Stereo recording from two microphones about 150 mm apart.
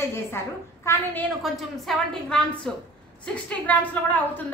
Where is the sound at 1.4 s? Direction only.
Centre (ahead or behind).